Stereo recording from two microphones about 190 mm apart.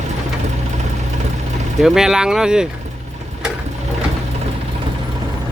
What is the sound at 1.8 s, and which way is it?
Speech, centre (ahead or behind).